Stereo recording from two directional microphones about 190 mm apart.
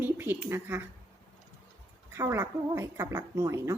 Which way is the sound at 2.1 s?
15° right (ahead or behind).